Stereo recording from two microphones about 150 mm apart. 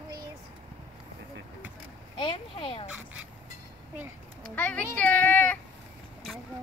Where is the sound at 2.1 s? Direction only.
30° left (ahead or behind).